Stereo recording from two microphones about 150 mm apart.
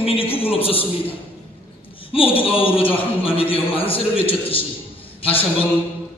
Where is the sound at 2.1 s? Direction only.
40° left (ahead or behind).